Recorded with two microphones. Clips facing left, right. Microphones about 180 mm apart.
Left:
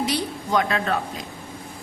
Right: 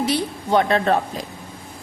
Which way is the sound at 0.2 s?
30° right (ahead or behind).